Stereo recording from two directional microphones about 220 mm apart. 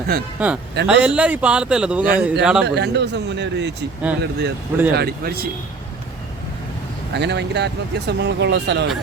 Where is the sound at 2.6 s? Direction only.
50° right (ahead or behind).